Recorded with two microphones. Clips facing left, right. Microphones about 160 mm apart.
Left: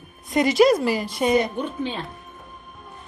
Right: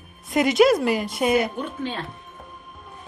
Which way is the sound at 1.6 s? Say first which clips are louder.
Left 2 dB; 15° left (ahead or behind).